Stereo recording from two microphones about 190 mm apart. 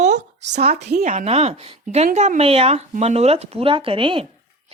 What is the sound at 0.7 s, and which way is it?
A woman's voice, 50° right (ahead or behind).